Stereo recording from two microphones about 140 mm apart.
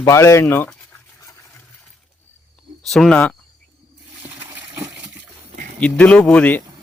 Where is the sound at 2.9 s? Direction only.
5° left (ahead or behind).